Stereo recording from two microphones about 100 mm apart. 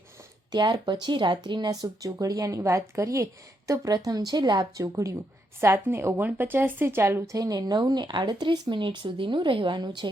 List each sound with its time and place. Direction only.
0.5 s speech: 50° right (ahead or behind)
4.8 s speech: 30° right (ahead or behind)
7.3 s speech: 40° right (ahead or behind)